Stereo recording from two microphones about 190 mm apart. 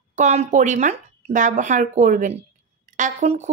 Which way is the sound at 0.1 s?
40° right (ahead or behind).